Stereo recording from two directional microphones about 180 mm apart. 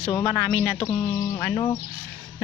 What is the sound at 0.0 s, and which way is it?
A woman's voice, 20° left (ahead or behind).